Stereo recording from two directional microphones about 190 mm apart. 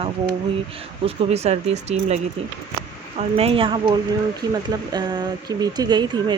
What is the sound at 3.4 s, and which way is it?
Speech, 30° right (ahead or behind).